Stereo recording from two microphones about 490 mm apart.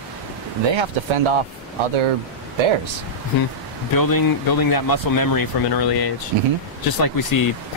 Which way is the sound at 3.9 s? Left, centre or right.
Left.